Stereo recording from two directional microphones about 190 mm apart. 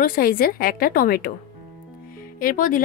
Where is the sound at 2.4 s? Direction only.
45° left (ahead or behind).